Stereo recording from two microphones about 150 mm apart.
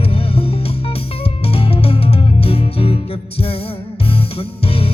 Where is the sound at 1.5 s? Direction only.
40° left (ahead or behind).